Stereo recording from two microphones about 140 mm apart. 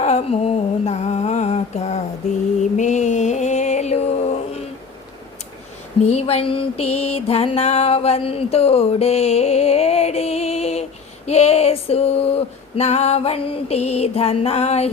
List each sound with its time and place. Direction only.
0.0 s mantra: 50° left (ahead or behind)
2.7 s a sound: 60° left (ahead or behind)
6.1 s music: 50° left (ahead or behind)
11.3 s female singing: 50° left (ahead or behind)